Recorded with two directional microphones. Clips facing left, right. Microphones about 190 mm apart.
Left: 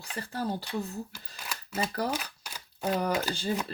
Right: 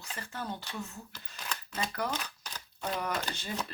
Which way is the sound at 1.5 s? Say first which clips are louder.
Left 4 dB; 10° left (ahead or behind).